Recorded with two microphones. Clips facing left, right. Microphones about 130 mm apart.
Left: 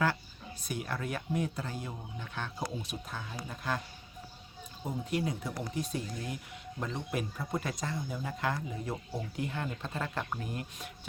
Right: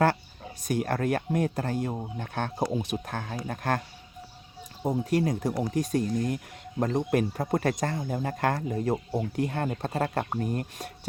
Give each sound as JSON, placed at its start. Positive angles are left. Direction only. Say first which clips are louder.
{"t": 0.7, "sound": "speech", "louder": "right 10 dB", "side_deg": -50}
{"t": 4.9, "sound": "speech", "louder": "right 8 dB", "side_deg": -45}